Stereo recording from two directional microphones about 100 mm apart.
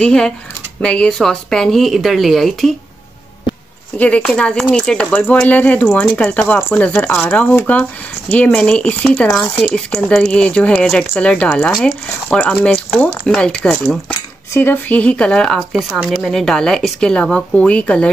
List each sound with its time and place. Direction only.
0.0 s a woman's voice: 5° left (ahead or behind)
4.0 s speech: 10° left (ahead or behind)
5.1 s speech: 20° left (ahead or behind)
14.5 s speech: 20° left (ahead or behind)